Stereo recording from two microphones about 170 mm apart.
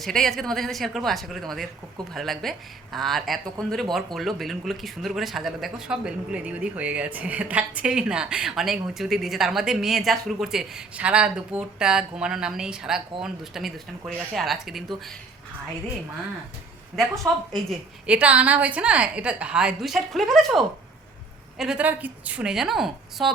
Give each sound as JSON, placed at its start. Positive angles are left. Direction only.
{"t": 0.0, "sound": "speech", "side_deg": 0}
{"t": 17.5, "sound": "a woman's voice", "side_deg": -5}